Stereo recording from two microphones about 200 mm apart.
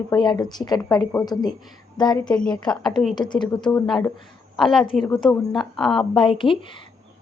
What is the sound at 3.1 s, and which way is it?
Speech, 20° left (ahead or behind).